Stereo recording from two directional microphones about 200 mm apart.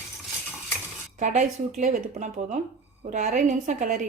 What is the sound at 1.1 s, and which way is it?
A woman's voice, 40° right (ahead or behind).